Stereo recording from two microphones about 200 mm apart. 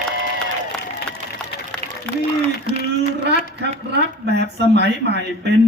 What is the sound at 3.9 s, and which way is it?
A man's voice, 55° right (ahead or behind).